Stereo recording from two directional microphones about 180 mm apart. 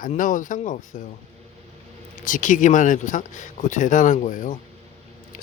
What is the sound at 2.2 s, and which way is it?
Speech, 45° left (ahead or behind).